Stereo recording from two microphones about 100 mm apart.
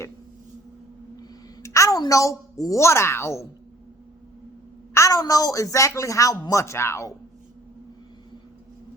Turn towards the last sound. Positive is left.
turn(degrees=25)  # may be behind; listen again after turning